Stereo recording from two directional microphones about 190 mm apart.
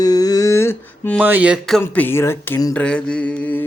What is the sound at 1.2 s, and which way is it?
Speech, 10° right (ahead or behind).